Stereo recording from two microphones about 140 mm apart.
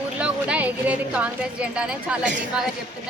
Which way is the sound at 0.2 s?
10° right (ahead or behind).